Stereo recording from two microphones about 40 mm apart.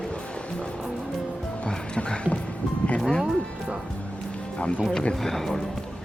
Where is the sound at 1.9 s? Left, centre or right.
Left.